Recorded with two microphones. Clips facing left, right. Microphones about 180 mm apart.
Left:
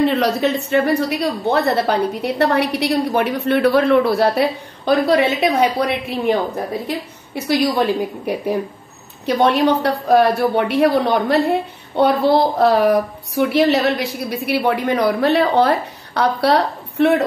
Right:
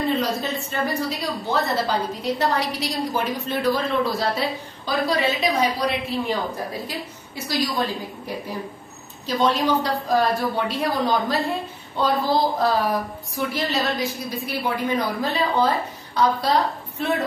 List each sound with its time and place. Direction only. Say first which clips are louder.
0.0 s a woman's voice: left 7 dB; 75° left (ahead or behind)